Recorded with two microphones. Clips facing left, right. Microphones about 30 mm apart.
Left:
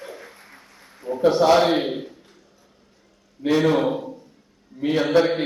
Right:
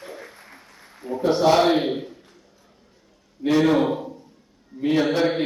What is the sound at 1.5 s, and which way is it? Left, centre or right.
Speech, centre.